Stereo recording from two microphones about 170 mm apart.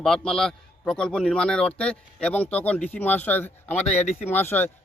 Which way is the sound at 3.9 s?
45° left (ahead or behind).